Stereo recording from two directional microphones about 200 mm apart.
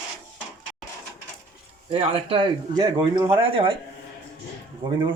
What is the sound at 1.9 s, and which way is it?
Speech, 25° right (ahead or behind).